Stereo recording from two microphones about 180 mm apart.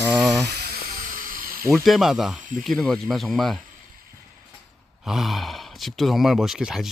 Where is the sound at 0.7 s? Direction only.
50° right (ahead or behind).